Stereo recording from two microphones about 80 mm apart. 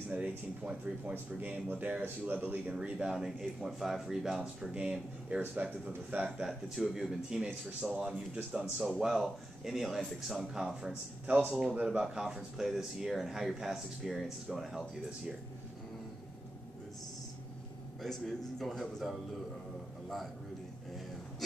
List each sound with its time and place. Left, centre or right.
0.1 s speech: centre
5.4 s speech: right
6.2 s speech: centre
18.0 s speech: centre